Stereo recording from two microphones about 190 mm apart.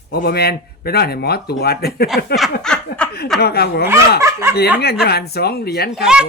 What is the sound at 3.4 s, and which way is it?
Speech, 55° left (ahead or behind).